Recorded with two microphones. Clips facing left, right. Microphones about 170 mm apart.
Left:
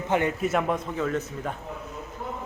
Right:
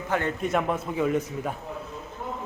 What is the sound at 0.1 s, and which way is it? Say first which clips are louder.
Speech: left 3 dB; 15° left (ahead or behind).